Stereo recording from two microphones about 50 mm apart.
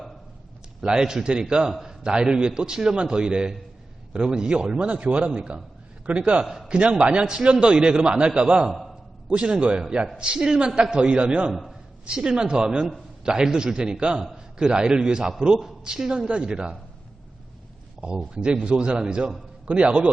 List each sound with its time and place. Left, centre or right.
0.8 s a man's voice: centre
9.3 s a man's voice: right
11.5 s a man's voice: centre
12.0 s a man's voice: centre
18.0 s a man's voice: centre